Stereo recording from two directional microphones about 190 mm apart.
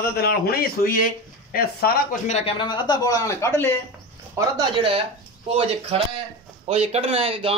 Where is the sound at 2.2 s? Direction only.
35° left (ahead or behind); by 3.7 s 15° left (ahead or behind).